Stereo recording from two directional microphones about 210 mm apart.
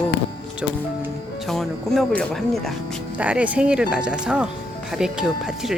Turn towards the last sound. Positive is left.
turn(degrees=-5)  # may be behind; listen again after turning